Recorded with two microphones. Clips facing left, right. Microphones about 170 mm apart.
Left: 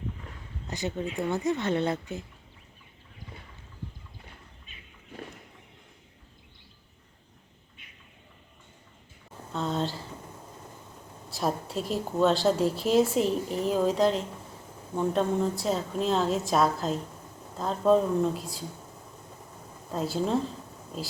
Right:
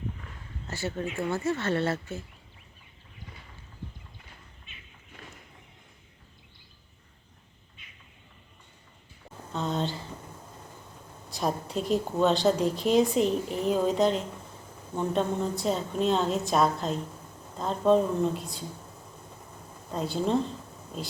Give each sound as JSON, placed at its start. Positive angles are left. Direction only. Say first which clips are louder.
{"t": 0.7, "sound": "speech", "louder": "left 1 dB", "side_deg": 15}
{"t": 4.6, "sound": "a sound", "louder": "left 1 dB", "side_deg": 40}
{"t": 7.8, "sound": "a sound", "louder": "even", "side_deg": 60}
{"t": 9.5, "sound": "speech", "louder": "even", "side_deg": 0}
{"t": 11.3, "sound": "a woman's voice", "louder": "even", "side_deg": 0}
{"t": 19.9, "sound": "a woman's voice", "louder": "even", "side_deg": 0}